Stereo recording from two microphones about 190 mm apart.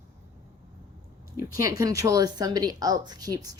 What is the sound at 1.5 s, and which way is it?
Speech, 15° right (ahead or behind).